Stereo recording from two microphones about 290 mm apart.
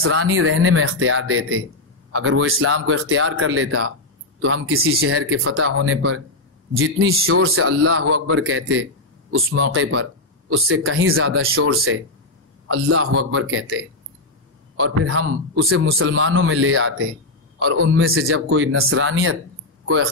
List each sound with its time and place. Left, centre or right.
0.0 s a man's voice: right
14.8 s a man's voice: right